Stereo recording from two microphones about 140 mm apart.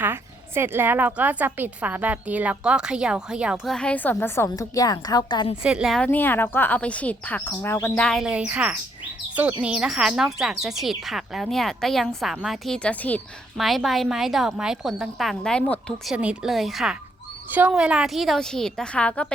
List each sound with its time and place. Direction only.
0.0 s a woman's voice: 15° right (ahead or behind); by 4.4 s 15° left (ahead or behind)
4.4 s a woman's voice: 25° left (ahead or behind)
5.6 s speech: 5° right (ahead or behind)
6.0 s speech: 15° left (ahead or behind)
8.0 s a woman's voice: centre (ahead or behind)
13.6 s speech: centre (ahead or behind)
16.1 s speech: 5° right (ahead or behind); by 19.3 s 10° left (ahead or behind)